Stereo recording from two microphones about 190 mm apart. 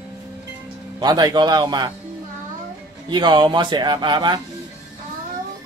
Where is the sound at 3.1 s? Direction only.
25° right (ahead or behind).